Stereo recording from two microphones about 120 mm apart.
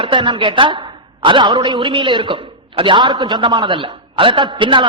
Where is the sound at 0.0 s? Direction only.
45° right (ahead or behind).